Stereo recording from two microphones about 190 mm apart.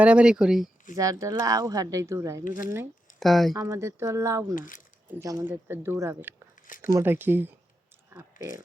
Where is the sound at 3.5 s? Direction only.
15° right (ahead or behind).